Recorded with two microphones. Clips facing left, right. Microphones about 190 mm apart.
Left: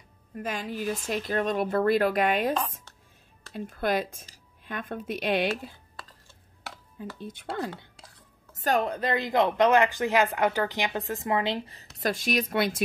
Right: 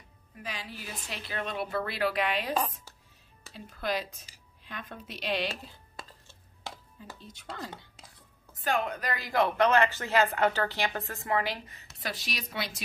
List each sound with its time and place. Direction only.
0.4 s speech: 50° left (ahead or behind)
3.5 s speech: 55° left (ahead or behind)
7.0 s speech: 55° left (ahead or behind)
8.5 s speech: 40° left (ahead or behind)
12.0 s speech: 50° left (ahead or behind)